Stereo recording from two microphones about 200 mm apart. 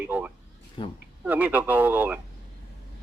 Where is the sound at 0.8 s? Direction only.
25° left (ahead or behind).